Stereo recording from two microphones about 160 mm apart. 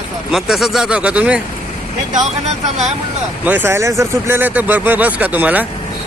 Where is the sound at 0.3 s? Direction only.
5° right (ahead or behind).